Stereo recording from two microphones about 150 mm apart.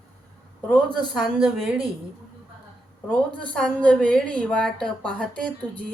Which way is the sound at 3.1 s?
5° left (ahead or behind).